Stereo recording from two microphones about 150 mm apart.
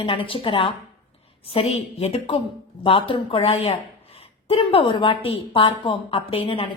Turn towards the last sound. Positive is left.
turn(degrees=35)  # may be behind; listen again after turning